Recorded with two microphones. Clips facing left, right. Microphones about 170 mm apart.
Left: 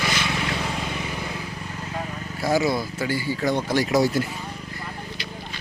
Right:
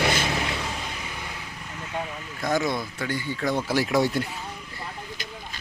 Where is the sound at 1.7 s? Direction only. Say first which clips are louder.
Right 1 dB; 35° left (ahead or behind).